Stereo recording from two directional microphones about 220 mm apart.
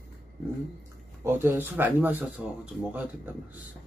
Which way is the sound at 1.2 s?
10° right (ahead or behind).